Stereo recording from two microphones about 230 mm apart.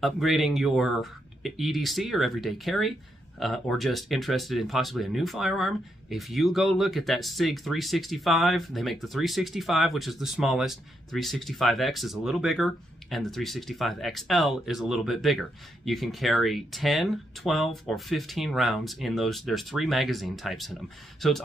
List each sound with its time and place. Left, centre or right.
0.0 s speech: centre